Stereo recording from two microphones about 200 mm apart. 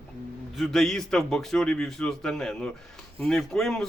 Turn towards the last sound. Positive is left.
turn(degrees=5)  # may be behind; listen again after turning